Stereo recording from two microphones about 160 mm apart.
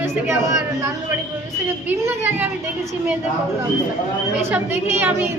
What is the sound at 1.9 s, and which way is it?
Speech, 15° right (ahead or behind).